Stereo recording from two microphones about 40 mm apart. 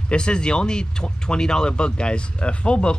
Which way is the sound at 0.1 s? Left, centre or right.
Left.